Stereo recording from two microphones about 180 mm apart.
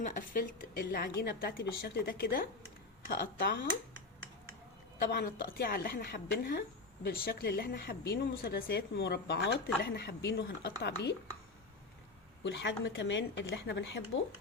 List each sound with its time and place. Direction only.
0.0 s a woman's voice: 50° left (ahead or behind)
4.9 s a woman's voice: 60° left (ahead or behind)
9.0 s speech: 70° left (ahead or behind)
12.4 s a woman's voice: 75° left (ahead or behind)